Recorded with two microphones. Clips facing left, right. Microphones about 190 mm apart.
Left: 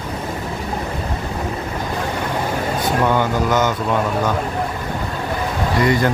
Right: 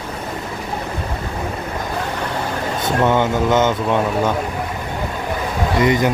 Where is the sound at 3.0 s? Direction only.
20° right (ahead or behind).